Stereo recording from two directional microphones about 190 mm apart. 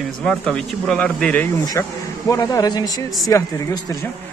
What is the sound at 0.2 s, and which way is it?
A man's voice, 5° left (ahead or behind).